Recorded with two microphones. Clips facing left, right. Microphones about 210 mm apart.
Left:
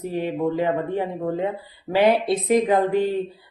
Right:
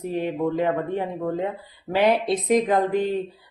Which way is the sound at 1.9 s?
15° left (ahead or behind).